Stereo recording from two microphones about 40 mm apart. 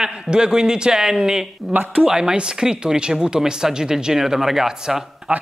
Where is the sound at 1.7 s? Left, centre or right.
Right.